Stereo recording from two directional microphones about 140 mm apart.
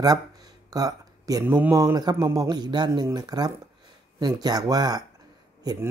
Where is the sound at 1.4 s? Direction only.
15° right (ahead or behind).